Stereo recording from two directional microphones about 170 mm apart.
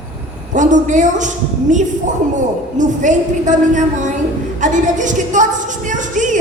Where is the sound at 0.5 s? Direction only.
45° right (ahead or behind).